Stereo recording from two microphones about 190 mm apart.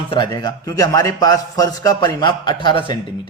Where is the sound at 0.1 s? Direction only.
20° left (ahead or behind).